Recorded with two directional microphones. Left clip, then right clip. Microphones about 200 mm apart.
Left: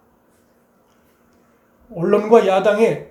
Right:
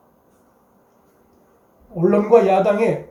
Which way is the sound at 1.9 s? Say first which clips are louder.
Left 1 dB; 40° left (ahead or behind).